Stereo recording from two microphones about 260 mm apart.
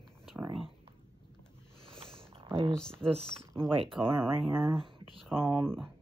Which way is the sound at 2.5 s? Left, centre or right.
Right.